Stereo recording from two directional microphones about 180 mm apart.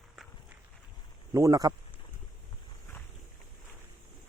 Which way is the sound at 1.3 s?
20° right (ahead or behind).